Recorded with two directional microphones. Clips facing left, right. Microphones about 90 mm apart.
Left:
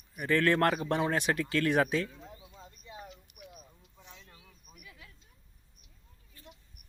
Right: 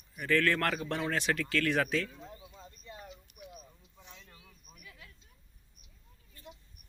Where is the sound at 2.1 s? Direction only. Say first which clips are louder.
Right 1 dB; centre (ahead or behind).